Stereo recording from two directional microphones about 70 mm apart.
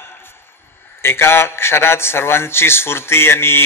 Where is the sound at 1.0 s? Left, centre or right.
Left.